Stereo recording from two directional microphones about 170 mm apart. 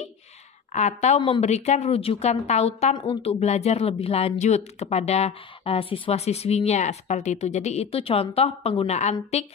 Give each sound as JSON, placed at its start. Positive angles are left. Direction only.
{"t": 0.7, "sound": "speech", "side_deg": 45}